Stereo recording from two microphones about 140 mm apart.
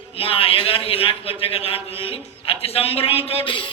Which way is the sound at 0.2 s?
40° left (ahead or behind).